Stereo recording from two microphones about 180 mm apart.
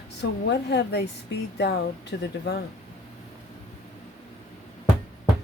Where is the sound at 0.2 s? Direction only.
70° left (ahead or behind).